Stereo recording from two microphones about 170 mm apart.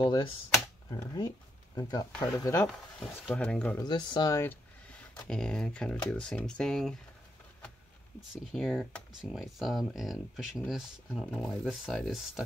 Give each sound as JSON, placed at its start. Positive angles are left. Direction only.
{"t": 0.0, "sound": "speech", "side_deg": 25}
{"t": 1.8, "sound": "speech", "side_deg": 25}
{"t": 2.6, "sound": "speech", "side_deg": 5}
{"t": 3.8, "sound": "speech", "side_deg": 25}
{"t": 5.2, "sound": "speech", "side_deg": 5}
{"t": 8.3, "sound": "speech", "side_deg": 0}